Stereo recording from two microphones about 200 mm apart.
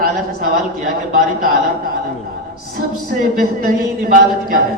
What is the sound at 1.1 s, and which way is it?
Speech, 45° right (ahead or behind).